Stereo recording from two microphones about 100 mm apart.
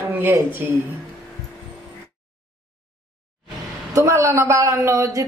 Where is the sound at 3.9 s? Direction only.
30° right (ahead or behind).